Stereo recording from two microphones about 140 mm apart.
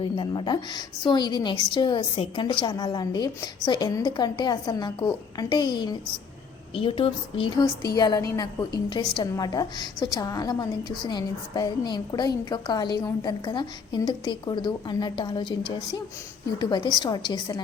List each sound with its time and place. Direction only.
0.0 s a woman's voice: 35° left (ahead or behind)
7.5 s a woman's voice: 25° left (ahead or behind)